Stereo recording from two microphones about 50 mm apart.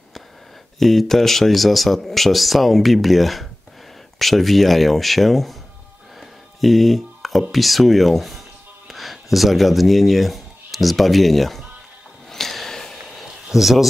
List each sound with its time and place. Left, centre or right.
0.7 s speech: centre
6.6 s speech: centre
12.3 s a sound: centre